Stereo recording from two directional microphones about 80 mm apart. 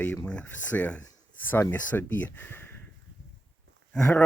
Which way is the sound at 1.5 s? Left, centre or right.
Left.